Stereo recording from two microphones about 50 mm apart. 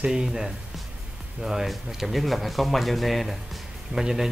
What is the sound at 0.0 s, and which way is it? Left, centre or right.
Speech, centre.